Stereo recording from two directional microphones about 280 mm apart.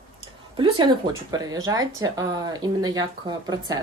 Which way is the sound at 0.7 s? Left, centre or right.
Centre.